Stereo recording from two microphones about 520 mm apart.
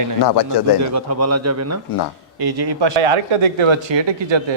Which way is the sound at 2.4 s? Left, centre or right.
Right.